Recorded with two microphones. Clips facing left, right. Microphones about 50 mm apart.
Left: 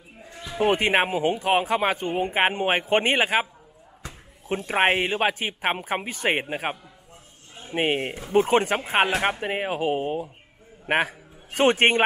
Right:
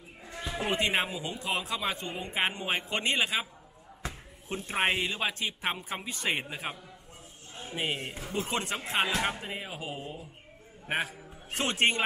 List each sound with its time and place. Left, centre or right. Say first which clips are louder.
0.7 s speech: left 7 dB; left
4.5 s speech: left 7 dB; left
8.9 s speech: left 6 dB; left
11.8 s speech: left 4 dB; left